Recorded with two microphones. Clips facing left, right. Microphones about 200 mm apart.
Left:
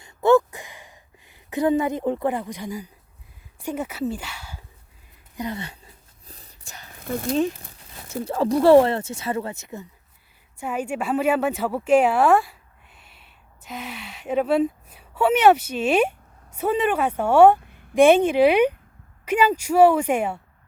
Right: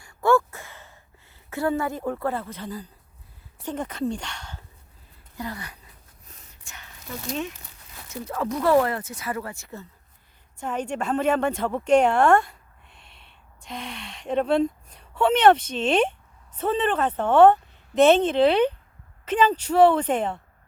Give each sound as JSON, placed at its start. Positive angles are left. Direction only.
{"t": 0.0, "sound": "a sound", "side_deg": 20}
{"t": 3.6, "sound": "speech", "side_deg": 10}
{"t": 5.4, "sound": "a sound", "side_deg": 25}
{"t": 6.9, "sound": "speech", "side_deg": 55}
{"t": 8.1, "sound": "speech", "side_deg": 30}
{"t": 10.6, "sound": "a woman's voice", "side_deg": 10}